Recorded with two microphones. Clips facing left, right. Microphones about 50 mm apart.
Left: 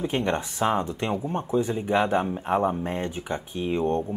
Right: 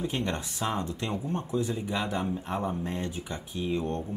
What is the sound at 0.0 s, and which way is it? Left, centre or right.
Speech, left.